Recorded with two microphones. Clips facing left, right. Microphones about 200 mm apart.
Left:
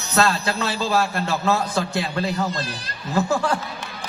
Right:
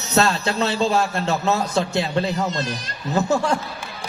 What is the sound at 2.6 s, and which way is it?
Speech, 30° left (ahead or behind).